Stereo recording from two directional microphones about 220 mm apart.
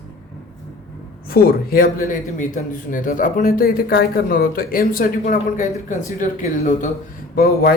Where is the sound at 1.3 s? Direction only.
45° left (ahead or behind).